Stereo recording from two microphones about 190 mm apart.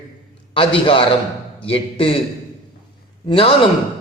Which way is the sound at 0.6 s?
25° left (ahead or behind).